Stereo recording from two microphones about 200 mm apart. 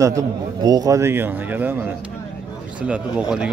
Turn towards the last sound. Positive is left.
turn(degrees=-5)  # may be behind; listen again after turning